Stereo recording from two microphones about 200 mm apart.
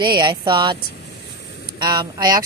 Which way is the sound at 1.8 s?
20° right (ahead or behind).